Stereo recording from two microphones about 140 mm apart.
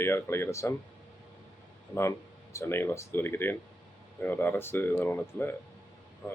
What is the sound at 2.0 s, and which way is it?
Speech, 20° left (ahead or behind).